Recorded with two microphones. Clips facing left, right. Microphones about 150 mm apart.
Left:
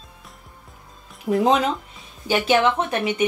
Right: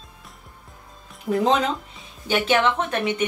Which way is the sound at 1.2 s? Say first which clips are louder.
Left 2 dB; 10° left (ahead or behind).